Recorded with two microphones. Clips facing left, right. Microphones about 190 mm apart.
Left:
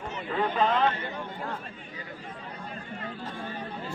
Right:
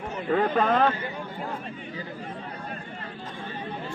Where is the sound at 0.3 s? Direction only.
55° right (ahead or behind).